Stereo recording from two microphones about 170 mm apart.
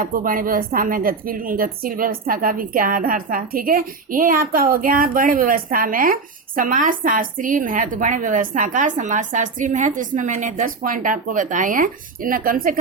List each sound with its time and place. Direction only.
0.0 s a woman's voice: 55° right (ahead or behind)